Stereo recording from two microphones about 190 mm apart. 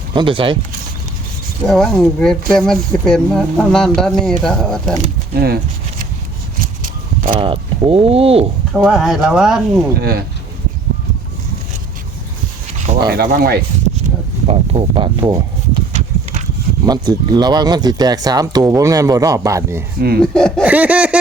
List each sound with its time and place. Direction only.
0.1 s speech: 25° right (ahead or behind)
1.6 s speech: 5° left (ahead or behind)
5.3 s speech: 55° right (ahead or behind)
6.6 s a sound: 45° right (ahead or behind)
7.3 s speech: 25° right (ahead or behind)
8.7 s speech: centre (ahead or behind)
10.0 s speech: 55° right (ahead or behind)
13.1 s speech: 55° right (ahead or behind)
14.4 s a sound: 30° right (ahead or behind)
16.8 s speech: 20° right (ahead or behind)
20.3 s speech: 5° left (ahead or behind)
20.7 s speech: 5° right (ahead or behind)